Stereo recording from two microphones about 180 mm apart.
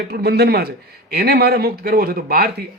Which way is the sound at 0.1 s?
60° right (ahead or behind).